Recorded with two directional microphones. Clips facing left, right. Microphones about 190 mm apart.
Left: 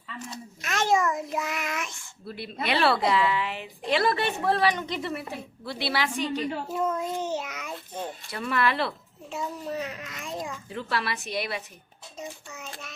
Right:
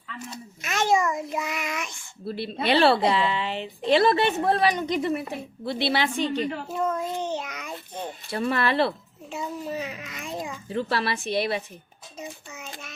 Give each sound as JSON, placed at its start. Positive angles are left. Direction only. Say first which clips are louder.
{"t": 0.6, "sound": "child singing", "louder": "right 1 dB", "side_deg": 0}
{"t": 2.2, "sound": "a woman's voice", "louder": "right 5 dB", "side_deg": -30}
{"t": 6.7, "sound": "a child's voice", "louder": "right 1 dB", "side_deg": 5}
{"t": 8.3, "sound": "speech", "louder": "right 3 dB", "side_deg": -30}
{"t": 9.3, "sound": "a child's voice", "louder": "right 1 dB", "side_deg": 0}
{"t": 10.7, "sound": "a woman's voice", "louder": "right 6 dB", "side_deg": -30}
{"t": 12.2, "sound": "a child's voice", "louder": "right 1 dB", "side_deg": 0}